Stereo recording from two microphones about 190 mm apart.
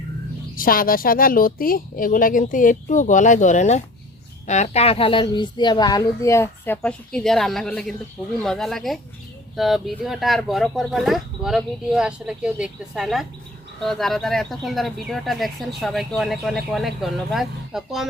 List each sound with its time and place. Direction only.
0.5 s a woman's voice: 50° left (ahead or behind); by 18.1 s centre (ahead or behind)